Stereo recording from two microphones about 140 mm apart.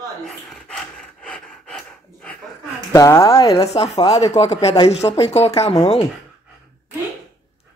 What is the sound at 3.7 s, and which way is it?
Speech, 45° left (ahead or behind).